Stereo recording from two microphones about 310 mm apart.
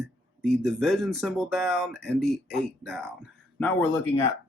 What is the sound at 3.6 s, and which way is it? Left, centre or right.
Speech, centre.